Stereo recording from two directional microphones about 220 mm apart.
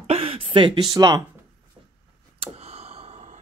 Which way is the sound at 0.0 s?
25° right (ahead or behind).